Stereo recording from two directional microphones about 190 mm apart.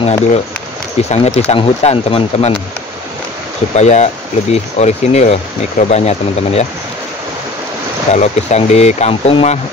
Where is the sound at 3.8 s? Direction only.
35° left (ahead or behind).